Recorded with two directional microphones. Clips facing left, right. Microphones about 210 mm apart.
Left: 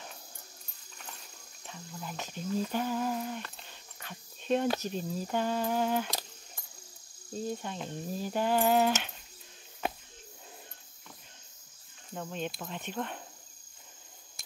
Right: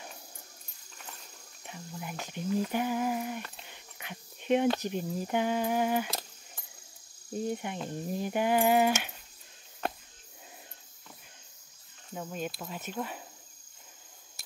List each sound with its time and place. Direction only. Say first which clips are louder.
1.6 s speech: right 2 dB; 15° right (ahead or behind)
7.3 s speech: right 3 dB; 15° right (ahead or behind)
12.1 s cricket: even; 5° right (ahead or behind)